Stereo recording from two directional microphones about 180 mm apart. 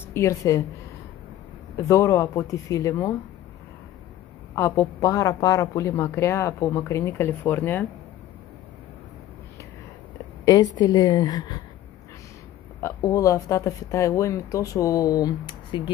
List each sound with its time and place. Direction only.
0.1 s speech: 15° left (ahead or behind)
1.8 s speech: 15° left (ahead or behind)
4.6 s speech: 15° left (ahead or behind)
10.4 s a woman's voice: 20° left (ahead or behind)
12.8 s speech: 20° left (ahead or behind)